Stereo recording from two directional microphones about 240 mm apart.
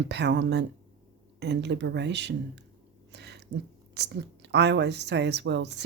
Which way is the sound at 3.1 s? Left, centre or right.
Right.